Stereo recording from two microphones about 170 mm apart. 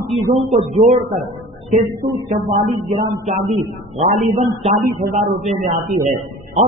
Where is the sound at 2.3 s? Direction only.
45° right (ahead or behind).